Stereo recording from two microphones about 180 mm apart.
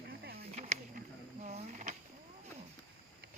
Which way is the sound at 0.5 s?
35° right (ahead or behind).